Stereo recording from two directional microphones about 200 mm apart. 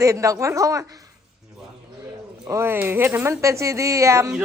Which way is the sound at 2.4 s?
15° right (ahead or behind).